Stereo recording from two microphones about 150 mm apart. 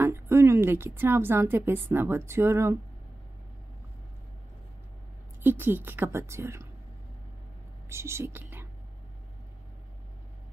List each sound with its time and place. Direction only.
0.0 s a woman's voice: 15° right (ahead or behind)
5.4 s a woman's voice: 15° right (ahead or behind)
7.9 s speech: 15° right (ahead or behind)